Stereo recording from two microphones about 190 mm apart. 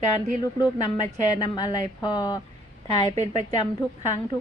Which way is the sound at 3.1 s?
35° right (ahead or behind).